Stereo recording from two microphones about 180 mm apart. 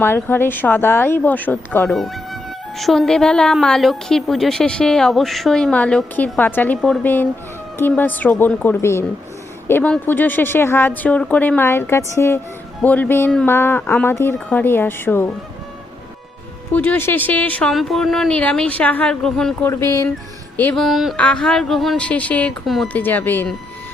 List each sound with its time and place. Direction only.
0.0 s speech: 10° left (ahead or behind)
16.7 s speech: 10° left (ahead or behind)
19.7 s speech: 15° left (ahead or behind)
20.6 s speech: 5° left (ahead or behind)